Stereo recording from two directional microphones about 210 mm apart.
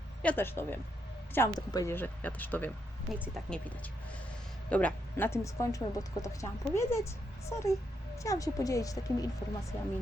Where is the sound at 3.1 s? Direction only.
5° right (ahead or behind).